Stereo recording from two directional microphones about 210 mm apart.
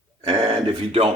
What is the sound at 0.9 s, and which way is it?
Speech, 30° right (ahead or behind).